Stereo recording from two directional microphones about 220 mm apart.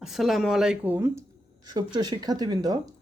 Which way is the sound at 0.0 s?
Centre (ahead or behind).